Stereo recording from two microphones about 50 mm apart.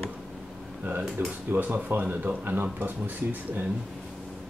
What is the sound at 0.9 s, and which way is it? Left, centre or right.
Speech, right.